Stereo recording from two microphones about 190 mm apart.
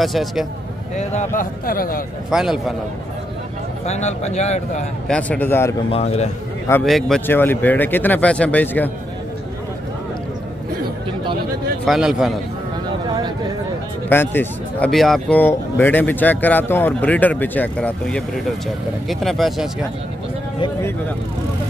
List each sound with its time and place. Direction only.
0.0 s speech: centre (ahead or behind)
0.9 s a man's voice: 40° left (ahead or behind)
2.3 s speech: centre (ahead or behind)
3.8 s speech: 35° left (ahead or behind)
5.0 s speech: 5° left (ahead or behind)
5.9 s speech: 35° left (ahead or behind)
6.8 s speech: centre (ahead or behind)
11.8 s speech: centre (ahead or behind)
14.0 s speech: 10° left (ahead or behind)